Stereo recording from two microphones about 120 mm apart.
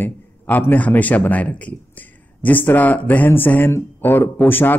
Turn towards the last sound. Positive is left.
turn(degrees=15)  # may be behind; listen again after turning